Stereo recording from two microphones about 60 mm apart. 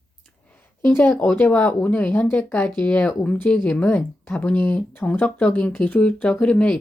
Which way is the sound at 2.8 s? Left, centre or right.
Left.